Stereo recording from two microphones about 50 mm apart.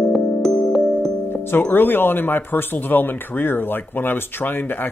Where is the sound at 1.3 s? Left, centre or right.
Left.